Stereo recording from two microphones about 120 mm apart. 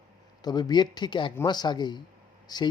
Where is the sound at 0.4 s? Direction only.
35° left (ahead or behind).